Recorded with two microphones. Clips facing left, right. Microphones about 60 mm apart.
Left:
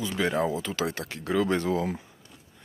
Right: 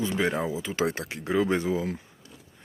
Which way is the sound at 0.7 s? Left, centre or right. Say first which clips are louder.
Right 3 dB; right.